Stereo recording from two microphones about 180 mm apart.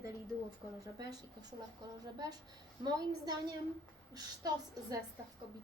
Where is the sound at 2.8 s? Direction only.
20° right (ahead or behind).